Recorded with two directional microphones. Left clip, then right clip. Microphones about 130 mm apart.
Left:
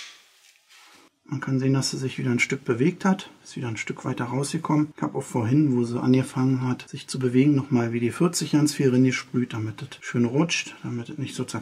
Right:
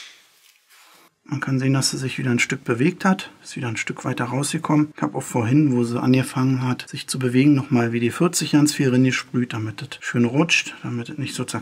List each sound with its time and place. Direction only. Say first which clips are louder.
1.3 s speech: right 3 dB; 35° right (ahead or behind)